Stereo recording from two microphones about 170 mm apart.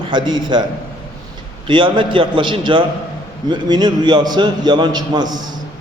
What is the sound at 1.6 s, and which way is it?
A man's voice, 30° right (ahead or behind).